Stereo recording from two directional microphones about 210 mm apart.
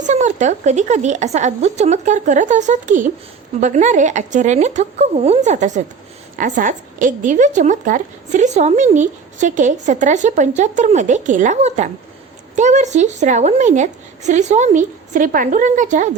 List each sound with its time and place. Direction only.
0.0 s a woman's voice: 35° right (ahead or behind)